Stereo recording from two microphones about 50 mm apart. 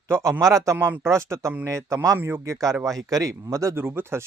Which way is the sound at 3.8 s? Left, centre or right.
Right.